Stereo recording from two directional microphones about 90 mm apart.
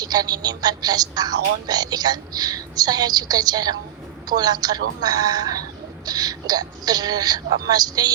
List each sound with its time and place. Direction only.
0.0 s a woman's voice: 50° right (ahead or behind)